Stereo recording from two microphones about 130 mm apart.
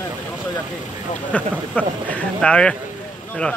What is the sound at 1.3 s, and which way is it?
Speech, 10° left (ahead or behind).